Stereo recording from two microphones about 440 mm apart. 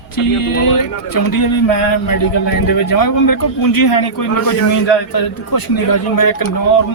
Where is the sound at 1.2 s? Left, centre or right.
Left.